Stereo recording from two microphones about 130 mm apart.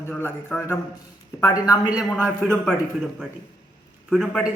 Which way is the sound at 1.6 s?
30° left (ahead or behind).